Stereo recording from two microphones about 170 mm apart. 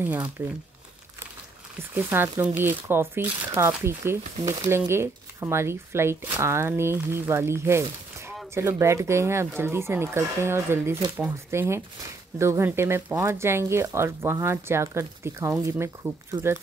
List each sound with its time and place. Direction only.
0.4 s speech: 15° right (ahead or behind)
2.0 s speech: 15° right (ahead or behind)